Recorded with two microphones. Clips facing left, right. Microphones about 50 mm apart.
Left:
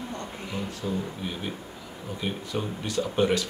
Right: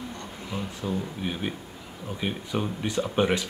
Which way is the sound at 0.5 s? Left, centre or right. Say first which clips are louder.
Right 1 dB; centre.